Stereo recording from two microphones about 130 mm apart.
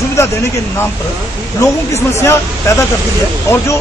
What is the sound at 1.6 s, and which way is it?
Speech, 20° left (ahead or behind).